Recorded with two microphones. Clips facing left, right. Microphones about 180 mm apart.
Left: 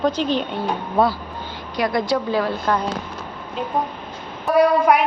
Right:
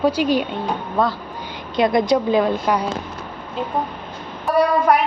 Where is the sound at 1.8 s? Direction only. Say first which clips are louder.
Right 4 dB; 20° right (ahead or behind).